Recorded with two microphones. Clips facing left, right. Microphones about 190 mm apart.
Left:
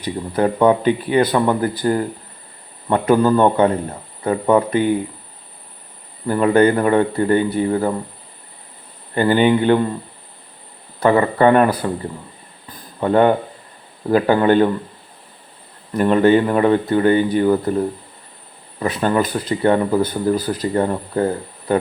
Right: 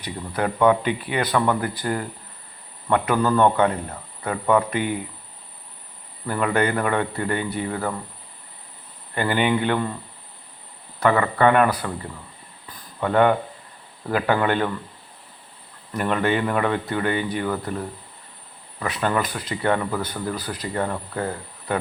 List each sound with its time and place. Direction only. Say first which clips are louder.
0.0 s speech: left 7 dB; 30° left (ahead or behind)
6.2 s speech: left 8 dB; 30° left (ahead or behind)
9.1 s speech: left 7 dB; 30° left (ahead or behind)
11.0 s speech: left 5 dB; 30° left (ahead or behind)
13.0 s speech: left 4 dB; 35° left (ahead or behind)
15.9 s speech: left 9 dB; 30° left (ahead or behind)